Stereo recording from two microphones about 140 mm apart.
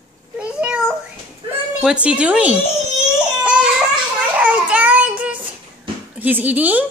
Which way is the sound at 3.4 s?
10° right (ahead or behind).